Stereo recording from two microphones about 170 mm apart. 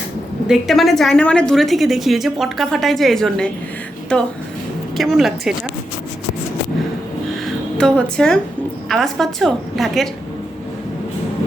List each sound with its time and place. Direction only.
0.4 s a woman's voice: centre (ahead or behind)
4.9 s a woman's voice: centre (ahead or behind)
7.8 s a woman's voice: 5° left (ahead or behind)